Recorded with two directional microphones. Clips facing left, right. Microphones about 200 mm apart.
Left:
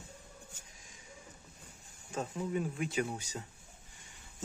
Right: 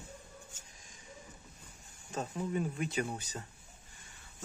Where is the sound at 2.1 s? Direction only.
5° left (ahead or behind).